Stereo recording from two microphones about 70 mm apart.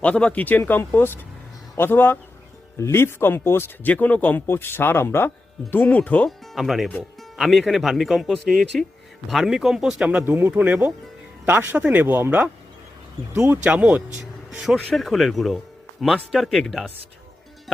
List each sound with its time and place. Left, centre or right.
0.0 s speech: centre
0.9 s a man's voice: left
3.9 s speech: left
5.7 s speech: left
6.2 s speech: centre
10.2 s speech: right
10.5 s speech: right
13.7 s speech: centre